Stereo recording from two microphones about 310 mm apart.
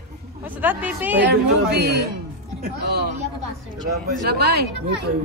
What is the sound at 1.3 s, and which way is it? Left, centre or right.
A woman's voice, right.